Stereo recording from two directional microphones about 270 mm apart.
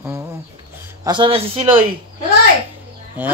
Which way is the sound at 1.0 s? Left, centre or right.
Centre.